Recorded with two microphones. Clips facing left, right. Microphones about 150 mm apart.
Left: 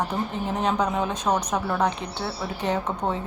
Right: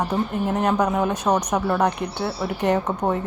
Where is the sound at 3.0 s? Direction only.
15° right (ahead or behind).